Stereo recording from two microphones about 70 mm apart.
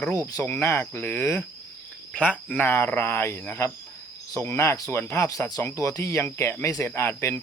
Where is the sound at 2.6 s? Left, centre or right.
Left.